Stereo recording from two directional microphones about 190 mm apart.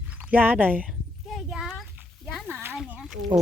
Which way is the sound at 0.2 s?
10° right (ahead or behind).